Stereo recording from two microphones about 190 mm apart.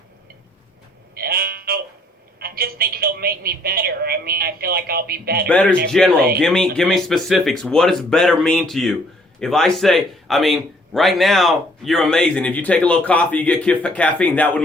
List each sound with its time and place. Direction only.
1.1 s sheep: 50° right (ahead or behind)
2.4 s a woman's voice: 50° right (ahead or behind)
5.5 s a man's voice: 5° left (ahead or behind)